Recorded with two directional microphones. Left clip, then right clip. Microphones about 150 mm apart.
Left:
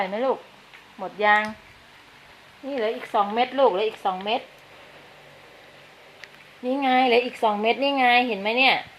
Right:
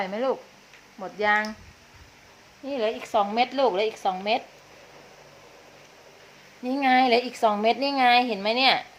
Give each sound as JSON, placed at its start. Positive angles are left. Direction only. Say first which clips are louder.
{"t": 0.0, "sound": "a woman's voice", "louder": "left 2 dB", "side_deg": -10}
{"t": 2.6, "sound": "a woman's voice", "louder": "left 1 dB", "side_deg": -10}
{"t": 6.7, "sound": "a woman's voice", "louder": "even", "side_deg": -15}